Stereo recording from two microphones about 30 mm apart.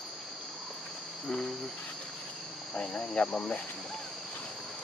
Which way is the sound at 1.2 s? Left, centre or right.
Centre.